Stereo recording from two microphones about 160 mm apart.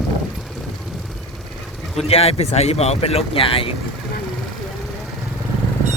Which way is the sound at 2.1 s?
40° left (ahead or behind).